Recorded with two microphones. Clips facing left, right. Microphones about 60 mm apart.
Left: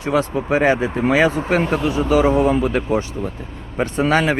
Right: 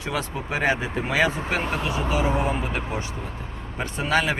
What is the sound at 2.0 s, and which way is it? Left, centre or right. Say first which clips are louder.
Speech: left 10 dB; left.